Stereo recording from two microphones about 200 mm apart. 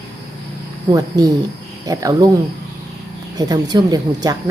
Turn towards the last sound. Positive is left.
turn(degrees=-20)  # may be behind; listen again after turning